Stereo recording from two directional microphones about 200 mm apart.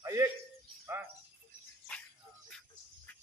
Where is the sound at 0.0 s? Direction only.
15° right (ahead or behind).